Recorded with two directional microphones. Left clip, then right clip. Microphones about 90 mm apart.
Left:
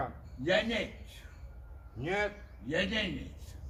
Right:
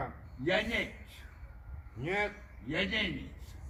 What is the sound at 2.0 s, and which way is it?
Speech, 20° left (ahead or behind).